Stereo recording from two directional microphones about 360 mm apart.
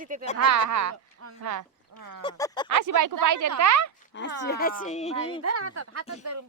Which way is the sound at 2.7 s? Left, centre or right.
Right.